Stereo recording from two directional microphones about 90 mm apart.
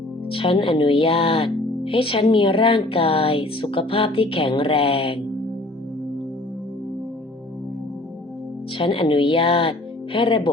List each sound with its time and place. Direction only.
0.3 s speech: 80° left
8.8 s speech: 75° left (ahead or behind)